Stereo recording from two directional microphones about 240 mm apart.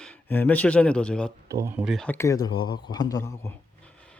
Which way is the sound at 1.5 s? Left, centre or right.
Centre.